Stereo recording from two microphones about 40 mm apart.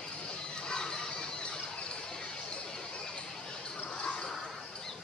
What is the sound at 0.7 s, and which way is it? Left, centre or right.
Squeal, centre.